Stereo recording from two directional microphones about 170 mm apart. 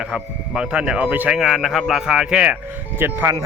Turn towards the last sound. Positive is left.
turn(degrees=-15)  # may be behind; listen again after turning